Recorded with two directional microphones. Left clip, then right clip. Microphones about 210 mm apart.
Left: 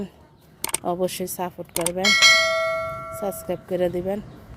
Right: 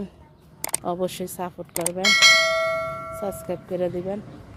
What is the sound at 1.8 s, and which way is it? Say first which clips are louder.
Bell: even; centre (ahead or behind).